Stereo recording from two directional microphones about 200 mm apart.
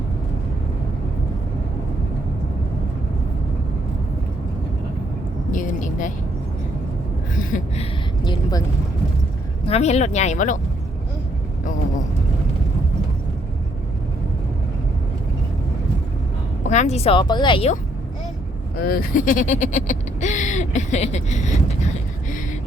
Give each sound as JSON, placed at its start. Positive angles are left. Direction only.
{"t": 5.5, "sound": "vehicle", "side_deg": 40}
{"t": 8.2, "sound": "a sound", "side_deg": 20}
{"t": 9.6, "sound": "speech", "side_deg": 30}
{"t": 16.6, "sound": "speech", "side_deg": 35}
{"t": 18.9, "sound": "speech", "side_deg": 45}